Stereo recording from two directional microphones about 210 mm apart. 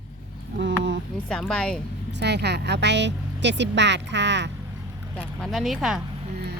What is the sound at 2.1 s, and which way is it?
Speech, 55° right (ahead or behind).